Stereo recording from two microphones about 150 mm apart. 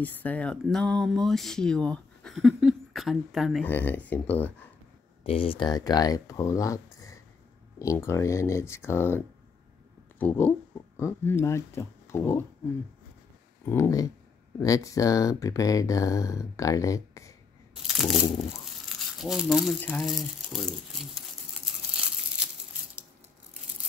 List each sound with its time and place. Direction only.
0.0 s speech: 10° left (ahead or behind)
3.6 s speech: 15° left (ahead or behind)
5.2 s speech: 40° left (ahead or behind); by 12.4 s 15° left (ahead or behind)
13.7 s speech: 20° left (ahead or behind)
17.8 s speech: centre (ahead or behind)
18.9 s crumpling: centre (ahead or behind)
20.0 s speech: centre (ahead or behind)